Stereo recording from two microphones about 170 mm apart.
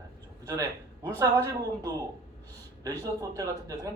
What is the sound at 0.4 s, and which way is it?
A man's voice, 20° right (ahead or behind).